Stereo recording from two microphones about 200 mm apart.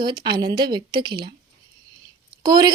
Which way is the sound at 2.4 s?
20° right (ahead or behind).